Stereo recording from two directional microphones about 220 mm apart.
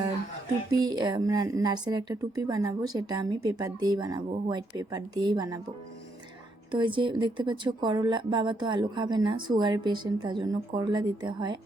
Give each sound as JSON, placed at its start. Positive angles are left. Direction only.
{"t": 0.7, "sound": "a woman's voice", "side_deg": -15}
{"t": 6.7, "sound": "speech", "side_deg": -20}